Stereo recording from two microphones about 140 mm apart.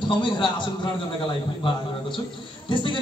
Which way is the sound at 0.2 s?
35° left (ahead or behind).